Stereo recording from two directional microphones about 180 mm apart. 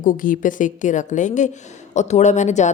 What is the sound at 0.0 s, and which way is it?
A woman's voice, 50° left (ahead or behind).